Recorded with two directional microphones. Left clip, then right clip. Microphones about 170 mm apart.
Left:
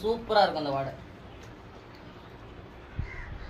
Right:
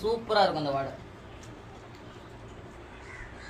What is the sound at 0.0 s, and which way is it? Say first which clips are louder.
Speech: left 1 dB; 20° right (ahead or behind).